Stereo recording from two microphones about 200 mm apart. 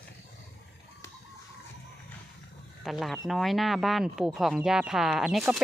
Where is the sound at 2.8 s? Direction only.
Centre (ahead or behind).